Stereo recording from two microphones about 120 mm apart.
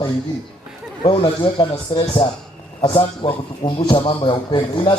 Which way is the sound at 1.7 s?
35° left (ahead or behind).